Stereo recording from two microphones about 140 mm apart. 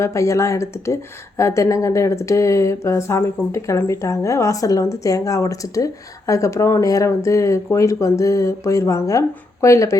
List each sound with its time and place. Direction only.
0.0 s speech: 20° left (ahead or behind)